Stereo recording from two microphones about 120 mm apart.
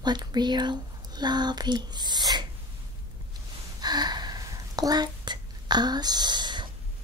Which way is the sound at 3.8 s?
35° right (ahead or behind).